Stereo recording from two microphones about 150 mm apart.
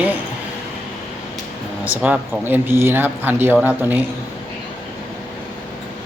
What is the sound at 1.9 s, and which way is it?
Speech, 5° right (ahead or behind).